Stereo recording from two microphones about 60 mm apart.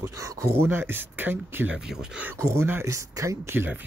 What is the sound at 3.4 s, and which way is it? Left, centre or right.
Speech, right.